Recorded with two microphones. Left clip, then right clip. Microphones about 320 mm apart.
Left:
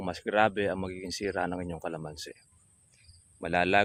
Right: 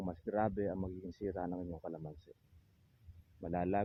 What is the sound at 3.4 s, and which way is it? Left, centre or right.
Speech, centre.